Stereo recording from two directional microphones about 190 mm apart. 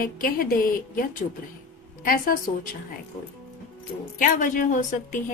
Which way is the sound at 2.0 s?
50° left (ahead or behind).